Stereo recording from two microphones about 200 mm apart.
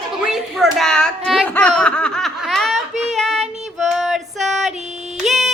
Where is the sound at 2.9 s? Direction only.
35° right (ahead or behind).